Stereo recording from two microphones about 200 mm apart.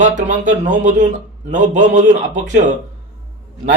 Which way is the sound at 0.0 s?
40° right (ahead or behind).